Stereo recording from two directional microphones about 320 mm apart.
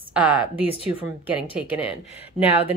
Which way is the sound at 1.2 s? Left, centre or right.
Centre.